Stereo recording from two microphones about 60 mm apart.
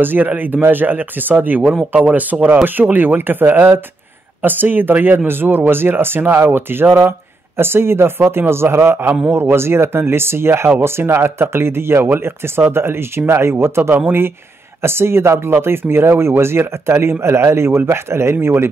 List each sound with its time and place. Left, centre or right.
0.0 s speech: right